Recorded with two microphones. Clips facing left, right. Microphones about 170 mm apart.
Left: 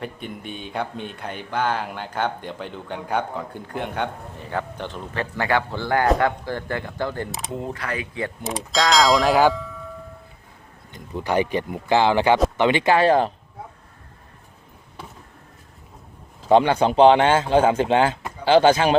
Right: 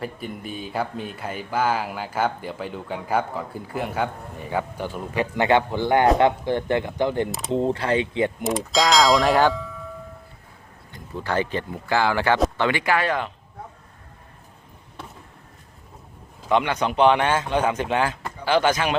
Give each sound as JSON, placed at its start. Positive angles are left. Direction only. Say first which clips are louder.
{"t": 0.0, "sound": "speech", "louder": "right 1 dB", "side_deg": -5}
{"t": 7.3, "sound": "speech", "louder": "right 2 dB", "side_deg": 0}
{"t": 7.5, "sound": "speech", "louder": "right 9 dB", "side_deg": -30}
{"t": 8.4, "sound": "speech", "louder": "left 1 dB", "side_deg": 0}
{"t": 10.9, "sound": "speech", "louder": "left 3 dB", "side_deg": 15}
{"t": 16.5, "sound": "speech", "louder": "left 5 dB", "side_deg": 30}